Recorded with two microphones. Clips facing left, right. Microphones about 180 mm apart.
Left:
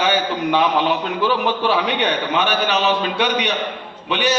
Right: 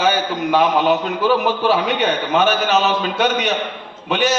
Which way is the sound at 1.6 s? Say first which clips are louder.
Right 2 dB; 45° right (ahead or behind).